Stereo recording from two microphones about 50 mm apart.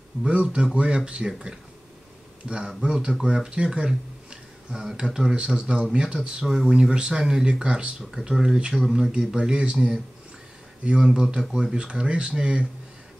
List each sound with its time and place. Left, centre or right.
0.2 s speech: right